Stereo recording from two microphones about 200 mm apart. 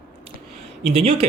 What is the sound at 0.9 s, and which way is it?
Speech, 30° right (ahead or behind).